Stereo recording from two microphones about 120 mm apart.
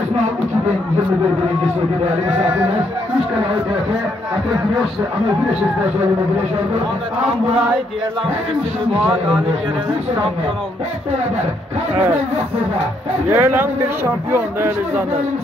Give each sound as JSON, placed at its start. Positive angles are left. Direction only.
{"t": 13.3, "sound": "a man's voice", "side_deg": -15}